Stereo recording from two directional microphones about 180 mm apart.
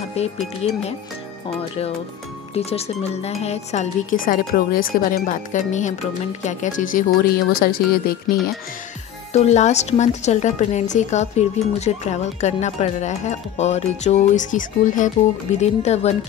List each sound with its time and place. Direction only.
0.2 s a woman's voice: 35° left (ahead or behind)
2.5 s a woman's voice: 35° left (ahead or behind); by 8.4 s 55° left (ahead or behind)
9.3 s a woman's voice: 40° left (ahead or behind)